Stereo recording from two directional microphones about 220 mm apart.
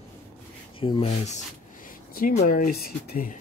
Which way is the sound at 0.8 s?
25° left (ahead or behind).